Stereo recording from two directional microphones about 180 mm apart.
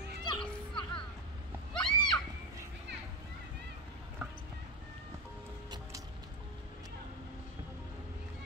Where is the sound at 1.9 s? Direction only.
25° left (ahead or behind).